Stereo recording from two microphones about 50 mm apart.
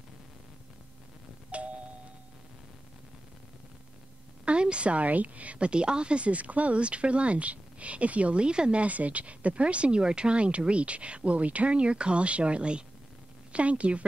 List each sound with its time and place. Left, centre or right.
4.5 s a woman's voice: right
8.8 s a woman's voice: right